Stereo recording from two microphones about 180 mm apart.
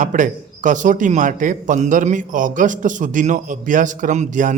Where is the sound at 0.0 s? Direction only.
45° right (ahead or behind).